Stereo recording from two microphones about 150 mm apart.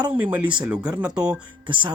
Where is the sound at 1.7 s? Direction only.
35° right (ahead or behind).